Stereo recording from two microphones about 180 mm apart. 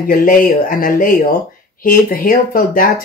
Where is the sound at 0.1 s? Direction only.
50° left (ahead or behind).